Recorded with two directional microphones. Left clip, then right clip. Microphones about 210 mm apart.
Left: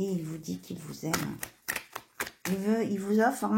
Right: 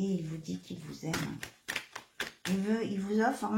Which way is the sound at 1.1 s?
25° left (ahead or behind).